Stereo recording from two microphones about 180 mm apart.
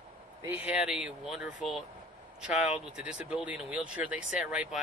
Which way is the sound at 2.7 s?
5° right (ahead or behind).